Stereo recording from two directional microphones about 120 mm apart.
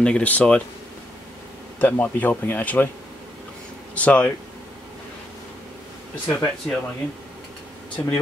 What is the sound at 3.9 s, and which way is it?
Speech, 10° left (ahead or behind).